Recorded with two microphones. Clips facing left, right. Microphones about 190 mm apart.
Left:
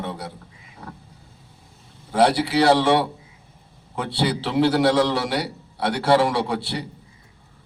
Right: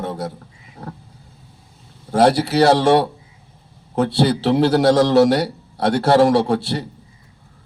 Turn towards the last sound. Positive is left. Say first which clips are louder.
# right 7 dB
turn(degrees=-45)  # may be behind; listen again after turning